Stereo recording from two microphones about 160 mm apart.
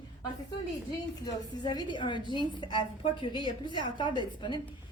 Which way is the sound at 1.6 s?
25° left (ahead or behind).